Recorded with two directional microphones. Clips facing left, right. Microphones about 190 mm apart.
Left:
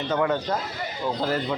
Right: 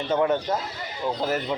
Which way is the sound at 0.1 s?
20° right (ahead or behind).